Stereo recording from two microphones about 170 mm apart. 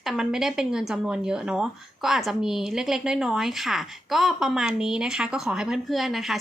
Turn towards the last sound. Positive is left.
turn(degrees=0)  # may be behind; listen again after turning